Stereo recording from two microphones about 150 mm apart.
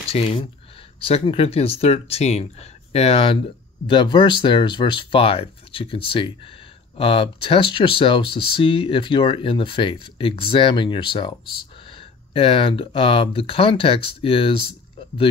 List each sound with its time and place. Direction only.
0.1 s speech: 40° left (ahead or behind)